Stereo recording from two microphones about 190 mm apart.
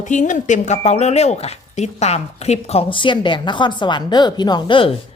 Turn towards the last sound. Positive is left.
turn(degrees=25)  # may be behind; listen again after turning